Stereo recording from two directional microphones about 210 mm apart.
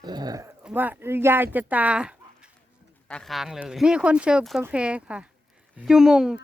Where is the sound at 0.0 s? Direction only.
20° right (ahead or behind).